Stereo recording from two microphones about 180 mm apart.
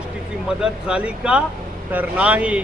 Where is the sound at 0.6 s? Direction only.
5° right (ahead or behind).